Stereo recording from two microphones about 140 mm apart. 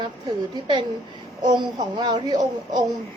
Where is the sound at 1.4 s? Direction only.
35° right (ahead or behind).